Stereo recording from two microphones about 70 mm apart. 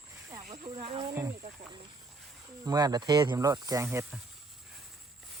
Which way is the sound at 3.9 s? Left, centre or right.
Right.